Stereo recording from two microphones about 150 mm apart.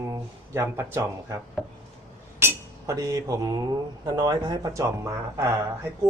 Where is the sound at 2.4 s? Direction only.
20° right (ahead or behind).